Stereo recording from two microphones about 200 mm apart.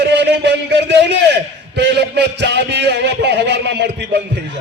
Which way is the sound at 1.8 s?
60° right (ahead or behind).